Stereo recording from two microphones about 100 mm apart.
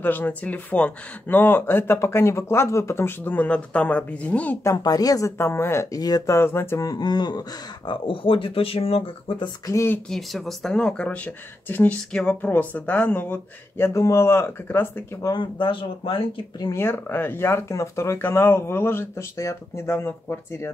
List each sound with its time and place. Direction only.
0.0 s speech: 20° left (ahead or behind)
4.6 s speech: 40° left (ahead or behind)
5.4 s speech: 25° left (ahead or behind)
5.9 s speech: 40° left (ahead or behind)
6.3 s speech: 25° left (ahead or behind)
6.8 s speech: 40° left (ahead or behind); by 9.1 s 75° left (ahead or behind)
9.7 s speech: 30° left (ahead or behind)
10.0 s speech: 5° left (ahead or behind)
12.1 s speech: 5° left (ahead or behind)
12.4 s speech: 15° left (ahead or behind)
15.2 s speech: 50° left (ahead or behind)
16.7 s speech: 20° left (ahead or behind)